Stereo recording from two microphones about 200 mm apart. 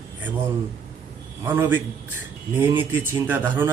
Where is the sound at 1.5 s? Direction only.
10° right (ahead or behind).